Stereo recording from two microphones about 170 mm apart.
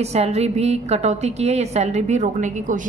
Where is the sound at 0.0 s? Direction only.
40° right (ahead or behind).